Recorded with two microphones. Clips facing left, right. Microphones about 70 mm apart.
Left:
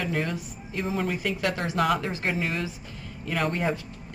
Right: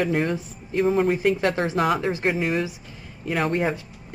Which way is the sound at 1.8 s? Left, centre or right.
Centre.